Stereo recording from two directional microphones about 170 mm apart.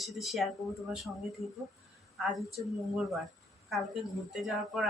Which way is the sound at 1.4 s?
35° left (ahead or behind).